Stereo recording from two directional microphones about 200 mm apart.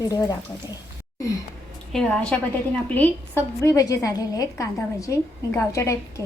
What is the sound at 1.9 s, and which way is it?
A woman's voice, 5° left (ahead or behind).